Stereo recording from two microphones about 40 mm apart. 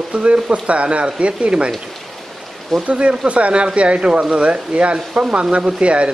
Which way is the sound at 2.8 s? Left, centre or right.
Right.